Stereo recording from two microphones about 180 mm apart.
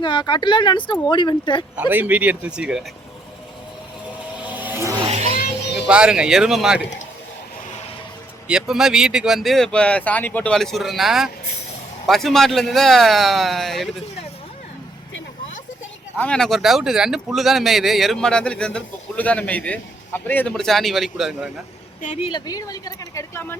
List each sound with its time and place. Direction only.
0.0 s speech: 25° left (ahead or behind)
1.7 s speech: 10° right (ahead or behind)
4.4 s vehicle: 10° right (ahead or behind)
5.0 s vehicle: 35° right (ahead or behind)
5.9 s speech: 5° right (ahead or behind)
8.4 s speech: 5° right (ahead or behind)
16.1 s speech: 5° left (ahead or behind)
22.0 s speech: 40° left (ahead or behind)
22.3 s speech: 25° left (ahead or behind)